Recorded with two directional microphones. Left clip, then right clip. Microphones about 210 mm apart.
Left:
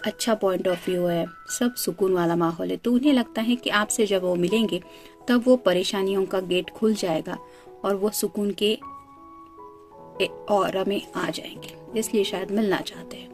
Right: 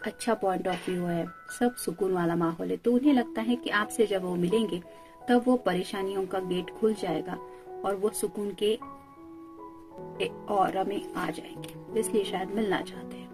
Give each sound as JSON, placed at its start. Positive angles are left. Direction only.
{"t": 0.0, "sound": "speech", "side_deg": 45}
{"t": 10.6, "sound": "speech", "side_deg": 45}